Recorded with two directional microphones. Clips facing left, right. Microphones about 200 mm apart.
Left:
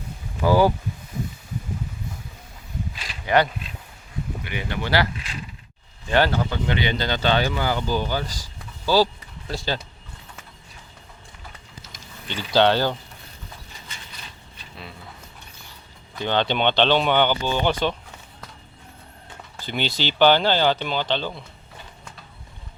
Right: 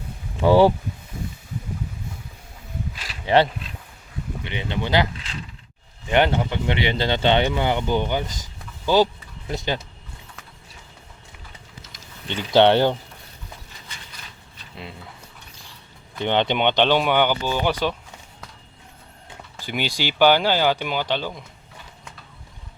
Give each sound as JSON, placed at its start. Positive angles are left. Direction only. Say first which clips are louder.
{"t": 0.3, "sound": "speech", "louder": "right 3 dB", "side_deg": -25}
{"t": 3.2, "sound": "speech", "louder": "right 2 dB", "side_deg": -30}
{"t": 6.1, "sound": "speech", "louder": "right 1 dB", "side_deg": -20}
{"t": 12.3, "sound": "speech", "louder": "right 3 dB", "side_deg": -20}
{"t": 16.1, "sound": "speech", "louder": "right 1 dB", "side_deg": -20}
{"t": 19.6, "sound": "speech", "louder": "even", "side_deg": -10}